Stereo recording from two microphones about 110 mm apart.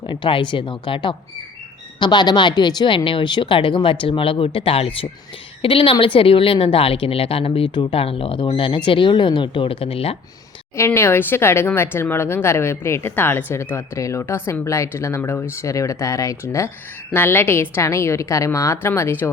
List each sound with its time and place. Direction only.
0.0 s speech: 45° left (ahead or behind)
7.9 s speech: 60° left (ahead or behind)
10.8 s speech: 20° left (ahead or behind)